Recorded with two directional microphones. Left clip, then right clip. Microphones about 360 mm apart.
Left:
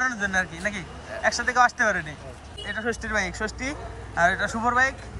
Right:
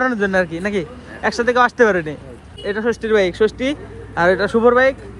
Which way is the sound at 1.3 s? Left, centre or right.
Centre.